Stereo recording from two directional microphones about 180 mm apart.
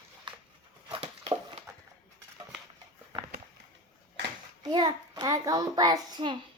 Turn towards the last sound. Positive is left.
turn(degrees=-25)  # may be behind; listen again after turning